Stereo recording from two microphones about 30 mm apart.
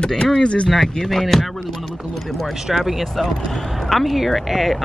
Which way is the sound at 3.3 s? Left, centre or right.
Centre.